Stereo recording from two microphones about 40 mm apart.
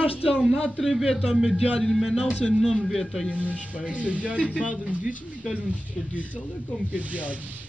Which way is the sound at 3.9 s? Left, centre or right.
Right.